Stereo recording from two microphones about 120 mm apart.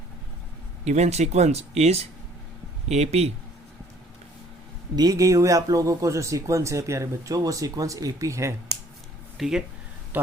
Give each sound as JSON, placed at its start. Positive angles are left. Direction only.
{"t": 0.9, "sound": "speech", "side_deg": -70}
{"t": 4.9, "sound": "speech", "side_deg": -30}
{"t": 9.4, "sound": "speech", "side_deg": -5}